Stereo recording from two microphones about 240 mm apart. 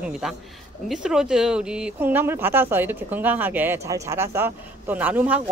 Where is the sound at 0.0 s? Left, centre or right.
Centre.